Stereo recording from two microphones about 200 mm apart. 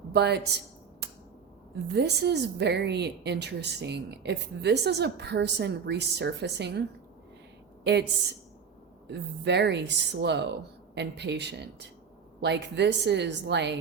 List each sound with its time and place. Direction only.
0.1 s a woman's voice: 55° right (ahead or behind)
1.0 s a sound: 55° right (ahead or behind)
1.9 s a woman's voice: 60° right (ahead or behind)
9.0 s a woman's voice: 60° right (ahead or behind)